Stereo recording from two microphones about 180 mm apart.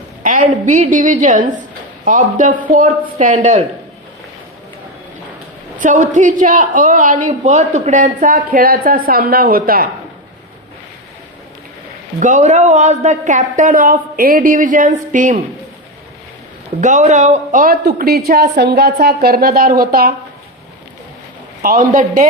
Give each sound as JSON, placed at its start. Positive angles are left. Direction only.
{"t": 0.2, "sound": "a woman's voice", "side_deg": -50}
{"t": 5.8, "sound": "a woman's voice", "side_deg": -45}
{"t": 12.2, "sound": "a woman's voice", "side_deg": -45}
{"t": 16.8, "sound": "a woman's voice", "side_deg": -40}
{"t": 21.6, "sound": "a woman's voice", "side_deg": -50}